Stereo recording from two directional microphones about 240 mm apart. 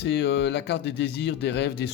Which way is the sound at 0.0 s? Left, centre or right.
Left.